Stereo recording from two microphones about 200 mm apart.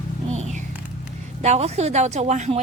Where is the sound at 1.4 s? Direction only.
35° right (ahead or behind).